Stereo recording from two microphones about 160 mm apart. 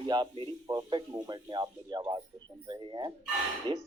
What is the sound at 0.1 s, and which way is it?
Speech, 25° right (ahead or behind).